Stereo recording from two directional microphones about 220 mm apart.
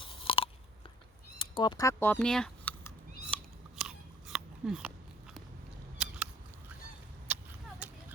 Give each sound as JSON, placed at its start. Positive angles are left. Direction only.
{"t": 0.0, "sound": "chewing", "side_deg": 25}
{"t": 1.4, "sound": "cat", "side_deg": 20}
{"t": 7.3, "sound": "a sound", "side_deg": -5}